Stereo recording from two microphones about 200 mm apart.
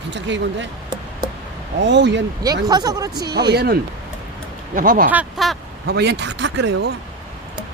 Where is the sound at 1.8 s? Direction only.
60° right (ahead or behind).